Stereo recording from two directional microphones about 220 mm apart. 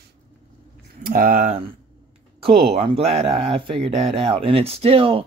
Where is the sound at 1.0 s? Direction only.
40° right (ahead or behind).